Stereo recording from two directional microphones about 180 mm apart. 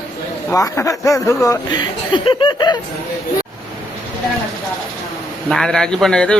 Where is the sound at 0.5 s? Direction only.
20° left (ahead or behind).